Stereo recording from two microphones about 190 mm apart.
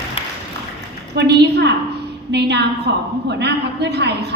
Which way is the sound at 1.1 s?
60° right (ahead or behind).